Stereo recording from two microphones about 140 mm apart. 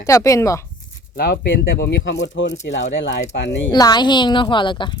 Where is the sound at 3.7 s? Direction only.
30° left (ahead or behind).